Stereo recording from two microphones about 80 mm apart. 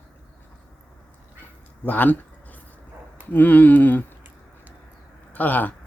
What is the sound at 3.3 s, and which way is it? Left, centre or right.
Speech, left.